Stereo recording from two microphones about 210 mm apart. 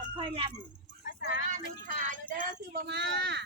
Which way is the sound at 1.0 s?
50° left (ahead or behind).